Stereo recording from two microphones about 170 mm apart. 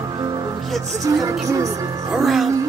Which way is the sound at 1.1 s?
20° right (ahead or behind).